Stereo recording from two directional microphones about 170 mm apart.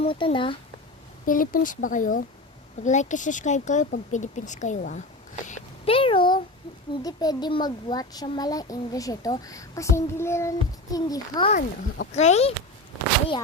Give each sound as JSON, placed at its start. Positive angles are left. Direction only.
{"t": 0.0, "sound": "speech", "side_deg": 35}
{"t": 1.2, "sound": "speech", "side_deg": 55}
{"t": 5.8, "sound": "a child's voice", "side_deg": 35}
{"t": 11.4, "sound": "speech", "side_deg": 45}